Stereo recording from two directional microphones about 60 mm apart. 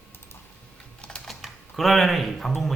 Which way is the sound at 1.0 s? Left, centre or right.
Centre.